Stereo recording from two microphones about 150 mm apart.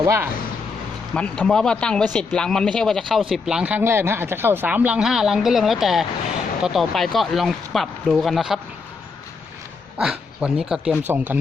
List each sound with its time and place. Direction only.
0.0 s speech: 20° right (ahead or behind)
1.1 s speech: 5° left (ahead or behind)
10.0 s speech: 5° right (ahead or behind)